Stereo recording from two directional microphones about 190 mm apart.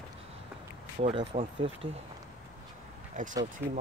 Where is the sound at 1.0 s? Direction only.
30° right (ahead or behind).